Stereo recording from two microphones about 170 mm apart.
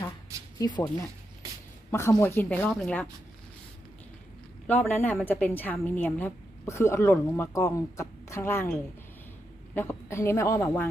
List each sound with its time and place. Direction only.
0.6 s speech: 25° left (ahead or behind)
1.9 s a woman's voice: 15° left (ahead or behind)
4.6 s a woman's voice: 10° left (ahead or behind)